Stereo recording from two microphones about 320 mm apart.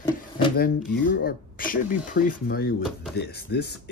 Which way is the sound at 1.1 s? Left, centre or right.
Left.